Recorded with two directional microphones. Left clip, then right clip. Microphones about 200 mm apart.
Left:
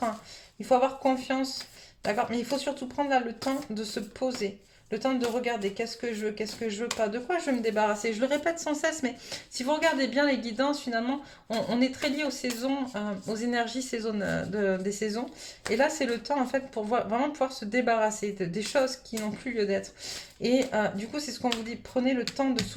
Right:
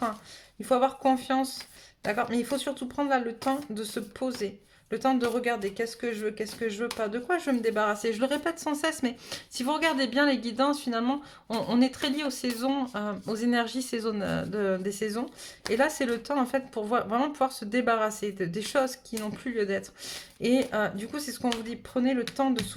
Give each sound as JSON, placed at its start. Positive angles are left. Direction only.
{"t": 0.6, "sound": "speech", "side_deg": -30}